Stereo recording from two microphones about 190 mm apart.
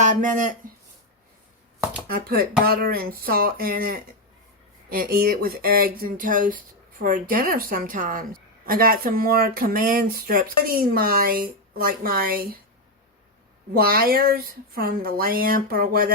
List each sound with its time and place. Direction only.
0.0 s speech: 40° right (ahead or behind)
2.0 s a woman's voice: 50° right (ahead or behind)
13.7 s a woman's voice: 50° right (ahead or behind)